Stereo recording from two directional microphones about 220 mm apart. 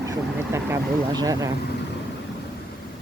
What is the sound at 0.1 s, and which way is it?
Speech, 15° right (ahead or behind).